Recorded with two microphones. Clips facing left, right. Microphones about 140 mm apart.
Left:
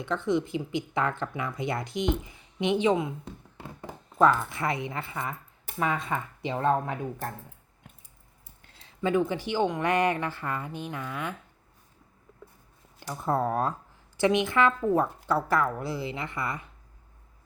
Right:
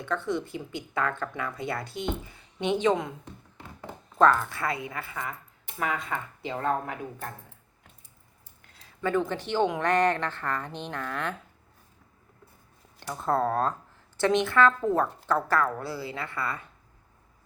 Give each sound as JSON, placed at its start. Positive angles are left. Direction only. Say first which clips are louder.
{"t": 0.3, "sound": "speech", "louder": "left 4 dB", "side_deg": 15}
{"t": 4.2, "sound": "speech", "louder": "right 1 dB", "side_deg": 10}
{"t": 8.6, "sound": "a sound", "louder": "even", "side_deg": 30}
{"t": 9.0, "sound": "speech", "louder": "left 1 dB", "side_deg": 15}
{"t": 13.0, "sound": "speech", "louder": "right 1 dB", "side_deg": 10}